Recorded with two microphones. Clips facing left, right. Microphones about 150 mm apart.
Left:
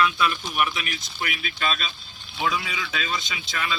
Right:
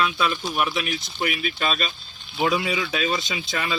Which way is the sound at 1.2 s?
40° right (ahead or behind).